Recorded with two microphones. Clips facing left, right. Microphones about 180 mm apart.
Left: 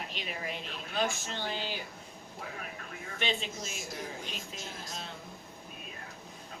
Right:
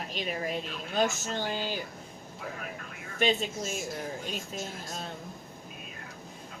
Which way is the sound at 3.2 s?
40° right (ahead or behind).